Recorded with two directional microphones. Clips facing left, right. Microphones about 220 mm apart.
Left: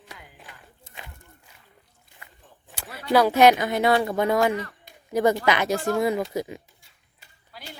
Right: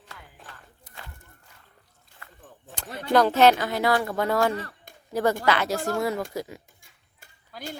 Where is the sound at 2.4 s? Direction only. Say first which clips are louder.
Right 8 dB; 50° right (ahead or behind).